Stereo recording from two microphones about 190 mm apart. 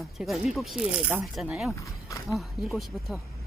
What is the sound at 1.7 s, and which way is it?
Livestock, 15° left (ahead or behind).